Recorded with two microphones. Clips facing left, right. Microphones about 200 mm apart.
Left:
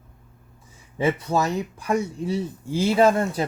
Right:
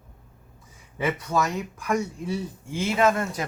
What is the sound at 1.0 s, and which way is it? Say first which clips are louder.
Speech: left 3 dB; 30° left (ahead or behind).